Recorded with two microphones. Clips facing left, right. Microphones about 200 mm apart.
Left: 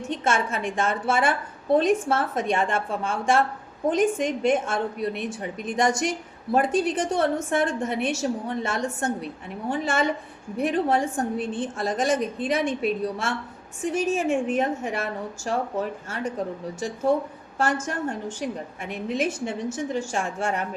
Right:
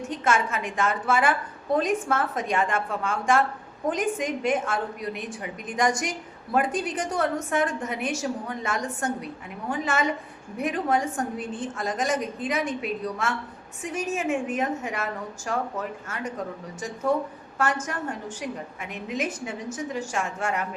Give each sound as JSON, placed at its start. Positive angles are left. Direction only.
{"t": 0.0, "sound": "a woman's voice", "side_deg": 25}
{"t": 17.6, "sound": "a woman's voice", "side_deg": 30}